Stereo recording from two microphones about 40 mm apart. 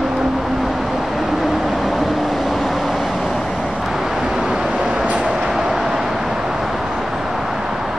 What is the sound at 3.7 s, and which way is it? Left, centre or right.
Vehicle, centre.